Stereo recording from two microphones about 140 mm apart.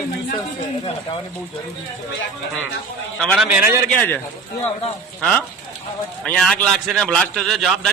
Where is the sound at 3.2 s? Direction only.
5° left (ahead or behind).